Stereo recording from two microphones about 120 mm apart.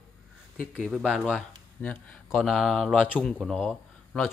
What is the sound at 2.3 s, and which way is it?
Speech, centre (ahead or behind).